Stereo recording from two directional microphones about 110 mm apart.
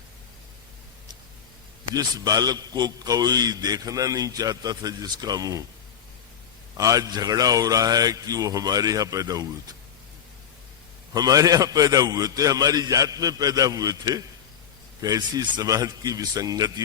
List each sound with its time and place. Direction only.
2.0 s a man's voice: 35° right (ahead or behind)
6.7 s a man's voice: 35° right (ahead or behind)
11.1 s a man's voice: 35° right (ahead or behind)